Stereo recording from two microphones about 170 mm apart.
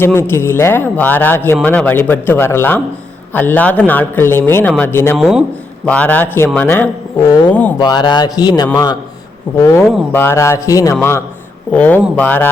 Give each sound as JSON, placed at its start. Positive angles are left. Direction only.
{"t": 0.0, "sound": "speech", "side_deg": 15}
{"t": 5.1, "sound": "a man's voice", "side_deg": 0}
{"t": 11.7, "sound": "speech", "side_deg": 10}